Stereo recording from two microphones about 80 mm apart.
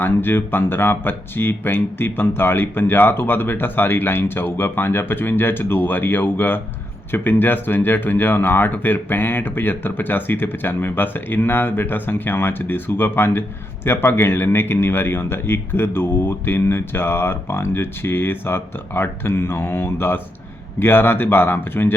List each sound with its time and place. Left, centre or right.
0.0 s speech: left